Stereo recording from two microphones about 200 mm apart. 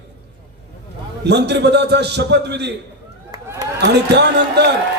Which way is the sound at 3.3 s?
15° right (ahead or behind).